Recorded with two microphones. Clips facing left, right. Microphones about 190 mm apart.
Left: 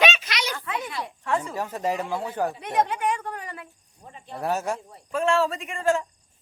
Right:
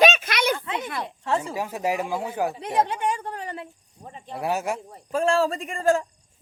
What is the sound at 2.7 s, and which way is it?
Speech, 30° right (ahead or behind).